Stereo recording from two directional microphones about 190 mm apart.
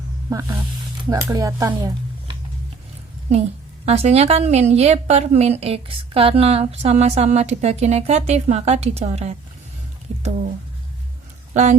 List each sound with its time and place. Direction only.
0.3 s speech: 20° right (ahead or behind)
3.8 s a woman's voice: 35° right (ahead or behind)
11.5 s a woman's voice: 40° right (ahead or behind)